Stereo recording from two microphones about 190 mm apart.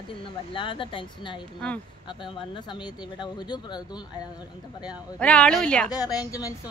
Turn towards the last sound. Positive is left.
turn(degrees=20)  # may be behind; listen again after turning